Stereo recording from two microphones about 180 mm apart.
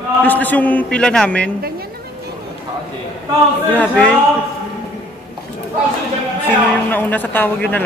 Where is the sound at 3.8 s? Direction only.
5° left (ahead or behind).